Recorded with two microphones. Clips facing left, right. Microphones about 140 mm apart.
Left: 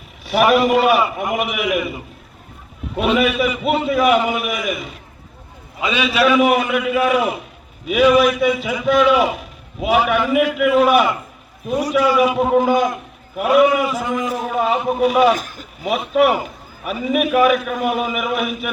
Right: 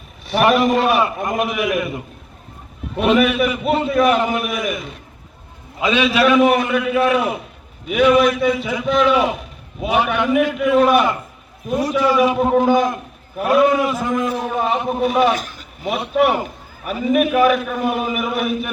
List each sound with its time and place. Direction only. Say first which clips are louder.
0.3 s a man's voice: left 1 dB; centre (ahead or behind)
15.4 s speech: even; 45° left (ahead or behind)
16.2 s a man's voice: even; centre (ahead or behind)
17.7 s a man's voice: even; 25° right (ahead or behind)
17.9 s a man's voice: left 1 dB; centre (ahead or behind)